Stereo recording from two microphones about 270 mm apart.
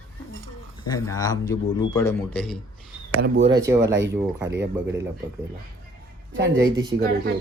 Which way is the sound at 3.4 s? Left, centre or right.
Centre.